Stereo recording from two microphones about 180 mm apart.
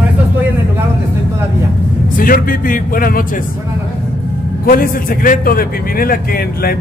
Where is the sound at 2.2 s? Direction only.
50° left (ahead or behind).